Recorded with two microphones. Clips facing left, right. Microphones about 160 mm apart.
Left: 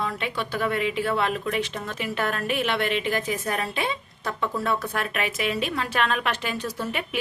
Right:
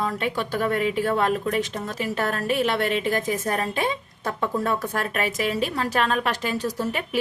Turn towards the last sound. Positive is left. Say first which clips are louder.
# right 3 dB
turn(degrees=-40)  # may be behind; listen again after turning